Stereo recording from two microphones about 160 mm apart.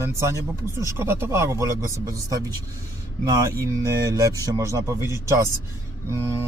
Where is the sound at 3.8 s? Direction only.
20° right (ahead or behind).